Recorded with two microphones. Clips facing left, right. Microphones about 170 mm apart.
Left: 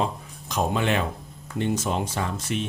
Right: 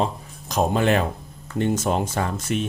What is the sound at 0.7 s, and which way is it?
Speech, 45° right (ahead or behind).